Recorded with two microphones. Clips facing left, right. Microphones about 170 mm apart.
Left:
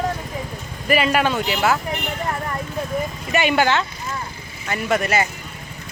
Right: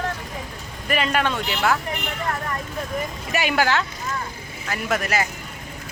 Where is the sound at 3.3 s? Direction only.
Centre (ahead or behind).